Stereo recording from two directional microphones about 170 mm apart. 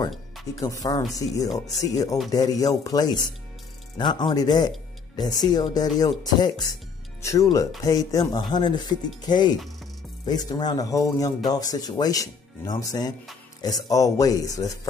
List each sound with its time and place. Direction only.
0.6 s speech: 20° left (ahead or behind)
7.2 s speech: 20° left (ahead or behind)